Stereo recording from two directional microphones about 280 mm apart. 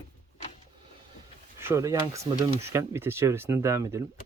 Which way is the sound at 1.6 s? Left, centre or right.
Centre.